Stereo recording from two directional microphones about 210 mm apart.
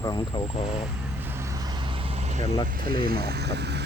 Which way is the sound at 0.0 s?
25° left (ahead or behind).